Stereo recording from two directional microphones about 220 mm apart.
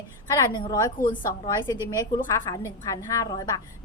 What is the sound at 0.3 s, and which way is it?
A woman's voice, 15° left (ahead or behind).